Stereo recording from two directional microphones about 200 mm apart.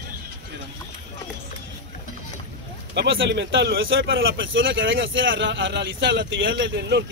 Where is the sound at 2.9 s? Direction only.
60° right (ahead or behind).